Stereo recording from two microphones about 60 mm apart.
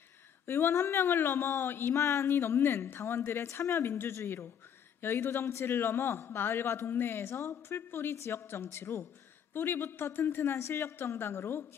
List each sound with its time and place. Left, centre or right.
0.5 s speech: left
2.0 s a man's voice: left